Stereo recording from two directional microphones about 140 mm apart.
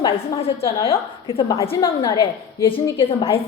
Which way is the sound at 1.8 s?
30° left (ahead or behind).